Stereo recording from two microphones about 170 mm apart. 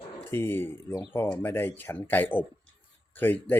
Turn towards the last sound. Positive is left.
turn(degrees=10)  # may be behind; listen again after turning